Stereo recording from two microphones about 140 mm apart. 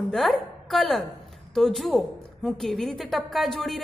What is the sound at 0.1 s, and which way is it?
A woman's voice, centre (ahead or behind).